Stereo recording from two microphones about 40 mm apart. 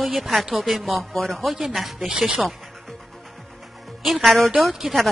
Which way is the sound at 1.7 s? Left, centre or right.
Centre.